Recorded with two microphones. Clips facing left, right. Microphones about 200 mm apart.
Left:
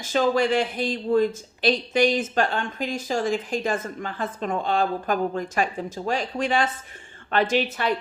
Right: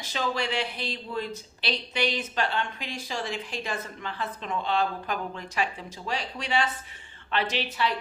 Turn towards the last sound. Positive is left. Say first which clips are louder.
# left 6 dB
turn(degrees=50)  # may be behind; listen again after turning